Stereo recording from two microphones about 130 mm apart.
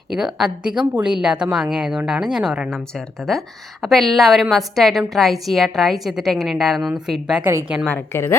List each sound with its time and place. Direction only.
0.1 s a woman's voice: 5° right (ahead or behind)
3.8 s a woman's voice: centre (ahead or behind)
7.9 s a woman's voice: 15° left (ahead or behind)